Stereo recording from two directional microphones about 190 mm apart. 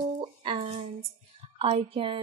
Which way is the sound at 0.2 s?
30° right (ahead or behind).